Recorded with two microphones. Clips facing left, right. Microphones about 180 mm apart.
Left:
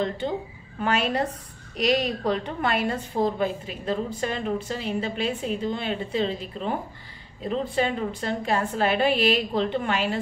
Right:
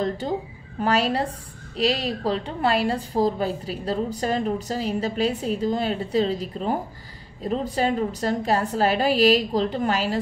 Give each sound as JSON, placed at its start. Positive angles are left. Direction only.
{"t": 0.7, "sound": "a woman's voice", "side_deg": -35}